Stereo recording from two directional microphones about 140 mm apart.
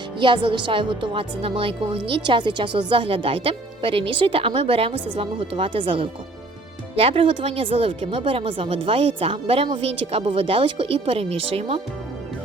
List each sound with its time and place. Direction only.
0.2 s speech: 35° right (ahead or behind)